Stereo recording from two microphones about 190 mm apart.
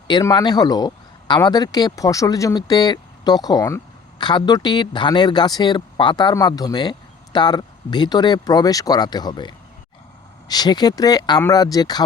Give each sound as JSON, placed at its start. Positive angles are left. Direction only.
{"t": 0.1, "sound": "speech", "side_deg": 20}